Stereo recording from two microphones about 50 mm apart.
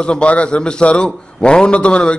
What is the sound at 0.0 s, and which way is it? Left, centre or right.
A man's voice, left.